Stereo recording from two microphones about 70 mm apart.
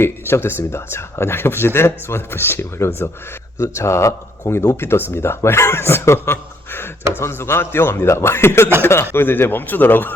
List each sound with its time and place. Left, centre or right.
0.0 s speech: left